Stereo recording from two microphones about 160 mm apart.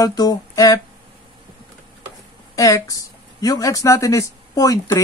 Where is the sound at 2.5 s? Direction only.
20° left (ahead or behind).